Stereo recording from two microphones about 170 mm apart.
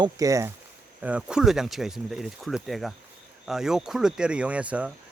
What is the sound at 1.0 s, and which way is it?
Speech, 5° right (ahead or behind).